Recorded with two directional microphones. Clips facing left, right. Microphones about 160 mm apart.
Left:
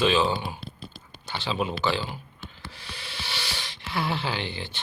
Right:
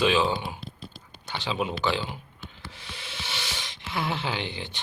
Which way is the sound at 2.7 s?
20° right (ahead or behind).